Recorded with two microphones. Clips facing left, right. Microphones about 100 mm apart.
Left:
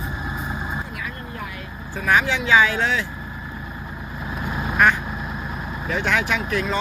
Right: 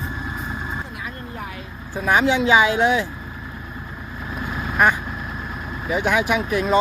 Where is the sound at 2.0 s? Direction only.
20° right (ahead or behind).